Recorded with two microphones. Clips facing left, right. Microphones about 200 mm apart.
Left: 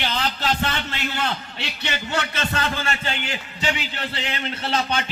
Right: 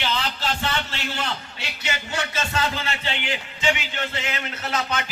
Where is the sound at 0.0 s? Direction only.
55° left (ahead or behind).